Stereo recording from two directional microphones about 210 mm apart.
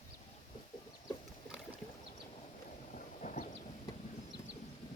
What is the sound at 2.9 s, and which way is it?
Thunder, 40° left (ahead or behind).